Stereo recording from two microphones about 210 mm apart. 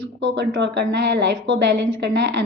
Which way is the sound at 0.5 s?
55° right (ahead or behind).